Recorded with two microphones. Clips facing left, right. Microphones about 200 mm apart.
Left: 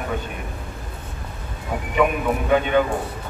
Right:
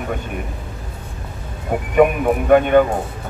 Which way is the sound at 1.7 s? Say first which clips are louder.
Right 6 dB; 50° right (ahead or behind).